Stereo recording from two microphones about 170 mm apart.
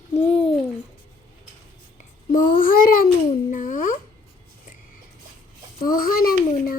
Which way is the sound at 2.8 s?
60° left (ahead or behind).